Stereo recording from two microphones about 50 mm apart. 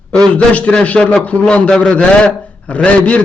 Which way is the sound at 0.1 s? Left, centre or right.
Left.